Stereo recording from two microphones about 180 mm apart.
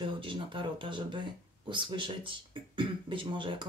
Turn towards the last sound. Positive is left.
turn(degrees=-25)  # may be behind; listen again after turning